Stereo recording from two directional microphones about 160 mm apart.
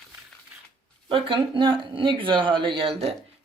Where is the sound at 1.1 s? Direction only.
30° right (ahead or behind).